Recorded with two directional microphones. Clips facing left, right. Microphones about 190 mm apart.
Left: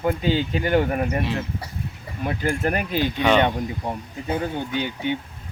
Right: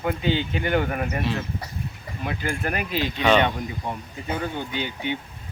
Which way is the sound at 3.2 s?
15° left (ahead or behind).